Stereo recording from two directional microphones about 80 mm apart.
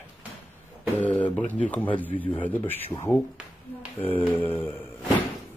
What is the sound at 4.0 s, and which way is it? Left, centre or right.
Speech, left.